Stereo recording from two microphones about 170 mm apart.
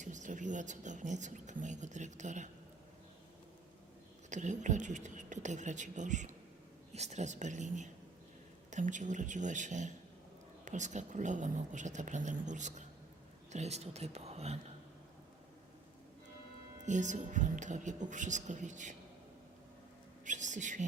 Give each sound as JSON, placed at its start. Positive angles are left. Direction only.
{"t": 0.0, "sound": "speech", "side_deg": -45}
{"t": 4.3, "sound": "speech", "side_deg": -45}
{"t": 16.8, "sound": "speech", "side_deg": -45}
{"t": 20.2, "sound": "speech", "side_deg": -45}